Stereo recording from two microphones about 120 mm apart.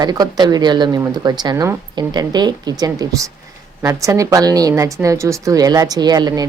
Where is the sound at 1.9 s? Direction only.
35° right (ahead or behind).